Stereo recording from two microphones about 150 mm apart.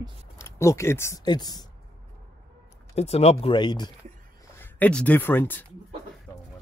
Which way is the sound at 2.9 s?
45° left (ahead or behind).